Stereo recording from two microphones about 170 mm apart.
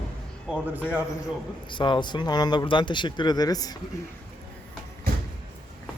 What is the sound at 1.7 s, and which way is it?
Speech, 30° left (ahead or behind).